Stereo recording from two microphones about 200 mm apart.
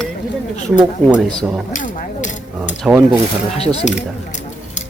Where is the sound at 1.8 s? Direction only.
35° left (ahead or behind).